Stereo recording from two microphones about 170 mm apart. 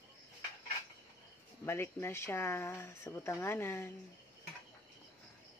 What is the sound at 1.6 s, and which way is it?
Speech, 15° left (ahead or behind).